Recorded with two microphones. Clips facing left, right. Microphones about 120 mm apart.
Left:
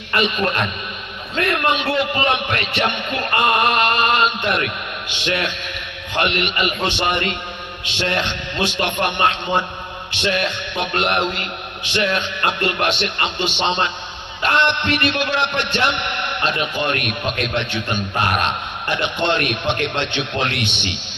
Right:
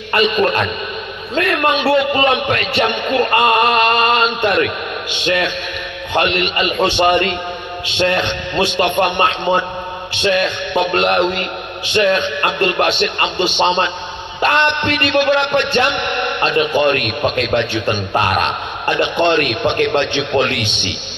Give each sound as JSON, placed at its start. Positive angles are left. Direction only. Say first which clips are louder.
{"t": 0.1, "sound": "a man's voice", "louder": "right 5 dB", "side_deg": -30}